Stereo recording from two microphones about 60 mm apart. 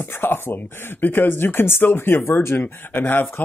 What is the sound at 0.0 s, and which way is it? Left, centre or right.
Speech, left.